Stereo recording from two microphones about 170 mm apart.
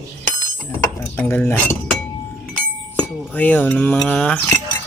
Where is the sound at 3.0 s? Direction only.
10° left (ahead or behind).